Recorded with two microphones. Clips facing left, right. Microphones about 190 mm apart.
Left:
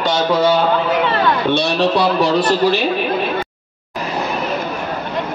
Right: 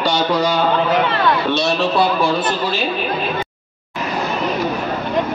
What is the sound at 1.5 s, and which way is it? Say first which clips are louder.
Speech: left 2 dB; 60° left (ahead or behind).